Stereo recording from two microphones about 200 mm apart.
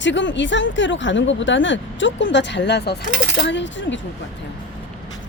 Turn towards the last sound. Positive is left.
turn(degrees=65)  # may be behind; listen again after turning